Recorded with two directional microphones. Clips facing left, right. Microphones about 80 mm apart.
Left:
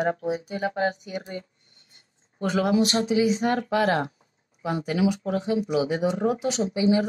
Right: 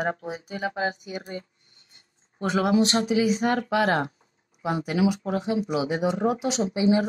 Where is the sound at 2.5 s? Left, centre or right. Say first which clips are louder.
Right 1 dB; right.